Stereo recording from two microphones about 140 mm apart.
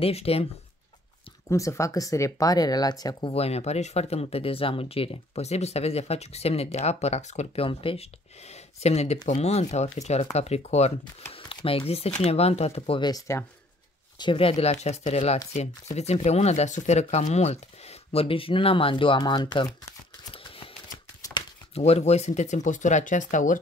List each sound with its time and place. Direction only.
0.0 s speech: 45° left (ahead or behind)
1.5 s speech: 20° left (ahead or behind)
3.3 s speech: 45° left (ahead or behind)
13.1 s speech: 20° left (ahead or behind)
14.1 s speech: 35° left (ahead or behind)
20.3 s typewriter: 40° left (ahead or behind)
21.2 s shuffling cards: 30° left (ahead or behind)
21.7 s speech: 45° left (ahead or behind); by 23.6 s 65° left (ahead or behind)